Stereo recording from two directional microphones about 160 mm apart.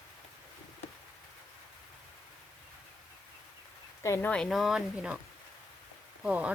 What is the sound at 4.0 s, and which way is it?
Speech, 20° left (ahead or behind).